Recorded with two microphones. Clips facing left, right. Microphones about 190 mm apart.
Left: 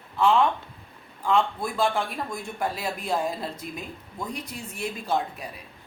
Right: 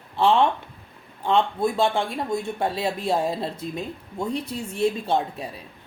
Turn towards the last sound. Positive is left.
turn(degrees=-25)  # may be behind; listen again after turning